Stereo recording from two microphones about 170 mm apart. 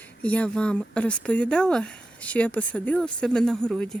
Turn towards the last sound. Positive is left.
turn(degrees=5)  # may be behind; listen again after turning